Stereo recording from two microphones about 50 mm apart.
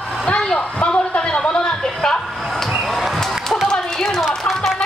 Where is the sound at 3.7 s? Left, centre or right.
Centre.